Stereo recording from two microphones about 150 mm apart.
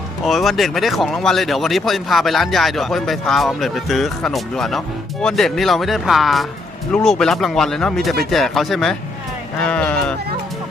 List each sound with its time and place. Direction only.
0.3 s speech: centre (ahead or behind)